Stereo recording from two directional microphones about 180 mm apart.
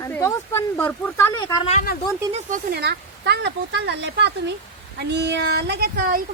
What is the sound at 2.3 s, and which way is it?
Speech, 45° right (ahead or behind).